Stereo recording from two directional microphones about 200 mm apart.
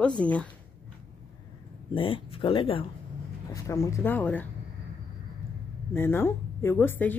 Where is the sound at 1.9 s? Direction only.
25° left (ahead or behind).